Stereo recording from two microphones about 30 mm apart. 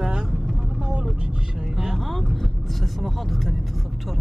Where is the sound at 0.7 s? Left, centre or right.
Right.